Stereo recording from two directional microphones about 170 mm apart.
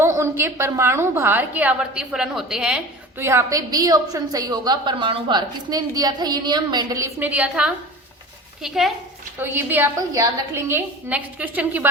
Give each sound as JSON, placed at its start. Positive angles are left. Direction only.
{"t": 0.0, "sound": "a woman's voice", "side_deg": -15}